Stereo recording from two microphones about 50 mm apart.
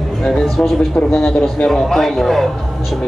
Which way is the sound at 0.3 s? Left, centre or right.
Centre.